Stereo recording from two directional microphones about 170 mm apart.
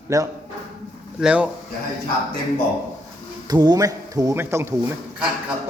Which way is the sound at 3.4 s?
25° right (ahead or behind).